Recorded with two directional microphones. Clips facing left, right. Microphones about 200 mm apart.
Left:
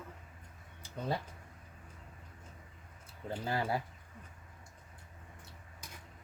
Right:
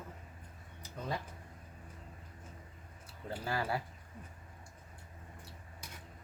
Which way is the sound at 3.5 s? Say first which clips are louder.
Left 1 dB; 25° left (ahead or behind).